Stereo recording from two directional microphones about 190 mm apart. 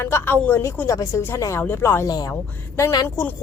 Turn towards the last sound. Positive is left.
turn(degrees=20)  # may be behind; listen again after turning